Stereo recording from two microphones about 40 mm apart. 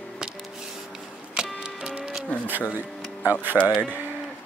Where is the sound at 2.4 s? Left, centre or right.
Right.